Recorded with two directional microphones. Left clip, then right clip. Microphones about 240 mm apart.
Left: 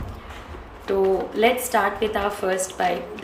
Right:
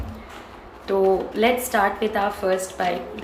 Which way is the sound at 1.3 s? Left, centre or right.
Centre.